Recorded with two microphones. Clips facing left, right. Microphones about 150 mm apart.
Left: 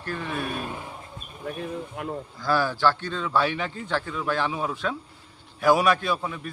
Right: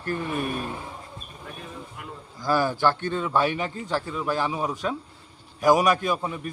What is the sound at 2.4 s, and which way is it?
A man's voice, 15° right (ahead or behind).